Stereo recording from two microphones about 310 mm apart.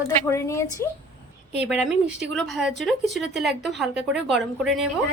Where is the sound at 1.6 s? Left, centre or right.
Centre.